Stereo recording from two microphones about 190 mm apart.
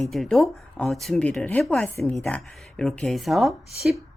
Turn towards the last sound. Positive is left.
turn(degrees=0)  # may be behind; listen again after turning